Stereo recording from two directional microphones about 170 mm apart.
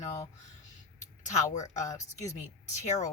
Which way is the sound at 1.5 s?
45° left (ahead or behind).